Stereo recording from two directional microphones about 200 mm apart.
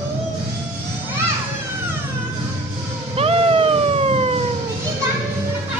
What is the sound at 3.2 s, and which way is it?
Cat, 30° right (ahead or behind).